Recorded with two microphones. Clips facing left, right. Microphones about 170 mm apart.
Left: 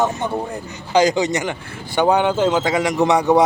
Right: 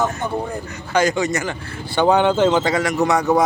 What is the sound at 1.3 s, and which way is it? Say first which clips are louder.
A man's voice: left 1 dB; 15° left (ahead or behind).